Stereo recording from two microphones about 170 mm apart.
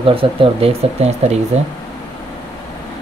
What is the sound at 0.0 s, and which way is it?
Speech, 35° right (ahead or behind).